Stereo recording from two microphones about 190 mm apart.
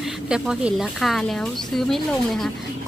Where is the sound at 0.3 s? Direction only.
5° right (ahead or behind).